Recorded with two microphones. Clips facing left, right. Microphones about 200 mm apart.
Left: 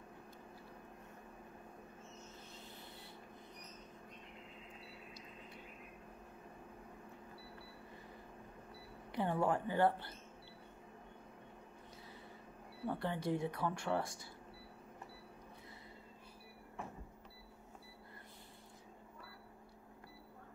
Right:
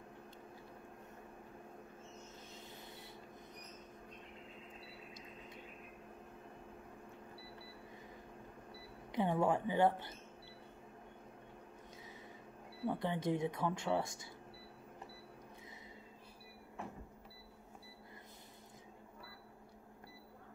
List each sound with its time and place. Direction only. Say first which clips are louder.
9.1 s speech: right 2 dB; 15° right (ahead or behind)
12.8 s speech: right 2 dB; 15° right (ahead or behind)